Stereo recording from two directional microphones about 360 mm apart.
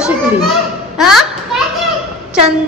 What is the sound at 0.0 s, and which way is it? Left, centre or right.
Children playing, centre.